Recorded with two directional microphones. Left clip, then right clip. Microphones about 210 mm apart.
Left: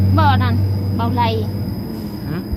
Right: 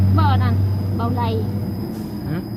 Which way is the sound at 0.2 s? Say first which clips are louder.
Left 6 dB; 35° left (ahead or behind).